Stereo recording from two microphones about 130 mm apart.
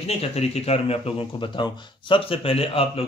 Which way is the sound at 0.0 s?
50° left (ahead or behind).